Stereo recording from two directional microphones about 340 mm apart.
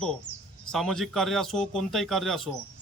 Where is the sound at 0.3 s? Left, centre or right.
Left.